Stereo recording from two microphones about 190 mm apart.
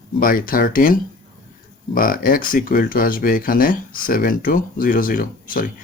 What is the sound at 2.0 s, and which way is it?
Speech, 50° left (ahead or behind).